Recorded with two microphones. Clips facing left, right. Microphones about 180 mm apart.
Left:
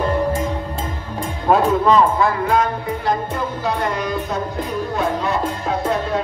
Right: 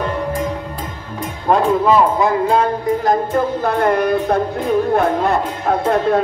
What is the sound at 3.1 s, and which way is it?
Music, 50° right (ahead or behind).